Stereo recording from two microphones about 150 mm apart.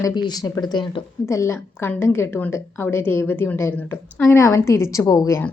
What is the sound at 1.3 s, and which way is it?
A woman's voice, 20° left (ahead or behind).